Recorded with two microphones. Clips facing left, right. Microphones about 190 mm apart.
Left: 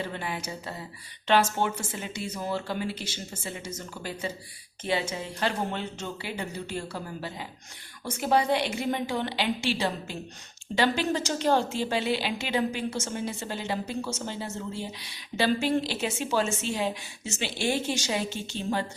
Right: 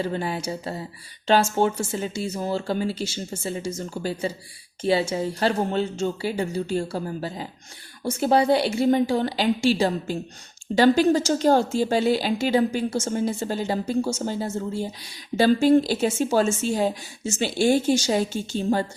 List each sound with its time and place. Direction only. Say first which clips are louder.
0.0 s a woman's voice: right 7 dB; 35° right (ahead or behind)